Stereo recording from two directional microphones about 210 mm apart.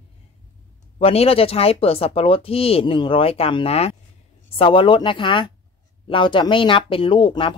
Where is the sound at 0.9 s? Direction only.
30° left (ahead or behind).